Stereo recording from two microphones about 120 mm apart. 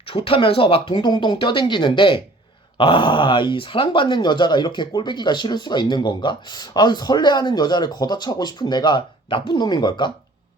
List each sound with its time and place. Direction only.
0.0 s speech: 50° left (ahead or behind)